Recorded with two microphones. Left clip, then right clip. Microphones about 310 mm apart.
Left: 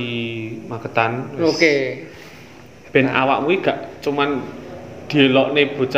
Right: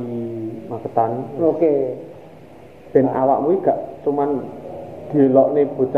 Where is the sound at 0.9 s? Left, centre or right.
Left.